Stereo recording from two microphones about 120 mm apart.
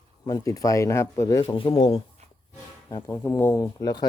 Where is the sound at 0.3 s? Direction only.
30° left (ahead or behind).